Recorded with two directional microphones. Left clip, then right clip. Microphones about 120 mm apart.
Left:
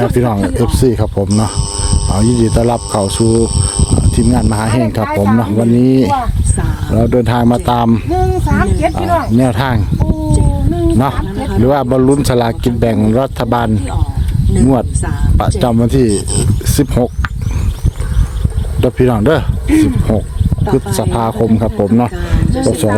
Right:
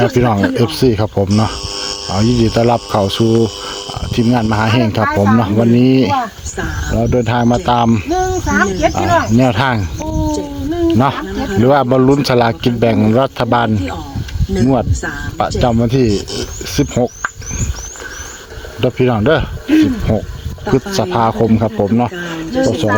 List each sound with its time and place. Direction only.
0.1 s speech: 10° left (ahead or behind)
8.1 s speech: 5° left (ahead or behind)
15.0 s speech: 15° left (ahead or behind)
16.1 s speech: 10° left (ahead or behind)
16.6 s speech: 35° left (ahead or behind)
18.8 s speech: 35° left (ahead or behind)
20.7 s speech: 15° left (ahead or behind); by 23.0 s 35° left (ahead or behind)